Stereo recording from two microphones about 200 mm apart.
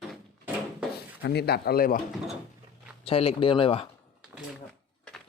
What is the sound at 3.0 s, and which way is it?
Speech, 30° left (ahead or behind).